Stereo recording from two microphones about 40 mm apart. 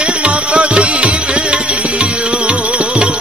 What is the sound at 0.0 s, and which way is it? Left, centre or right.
Music, right.